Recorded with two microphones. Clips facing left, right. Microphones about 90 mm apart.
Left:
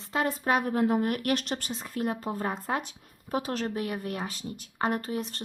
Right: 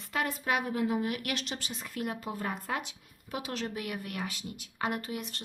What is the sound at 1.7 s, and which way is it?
Speech, 35° left (ahead or behind).